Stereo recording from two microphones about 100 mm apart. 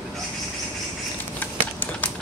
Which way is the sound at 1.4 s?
20° left (ahead or behind).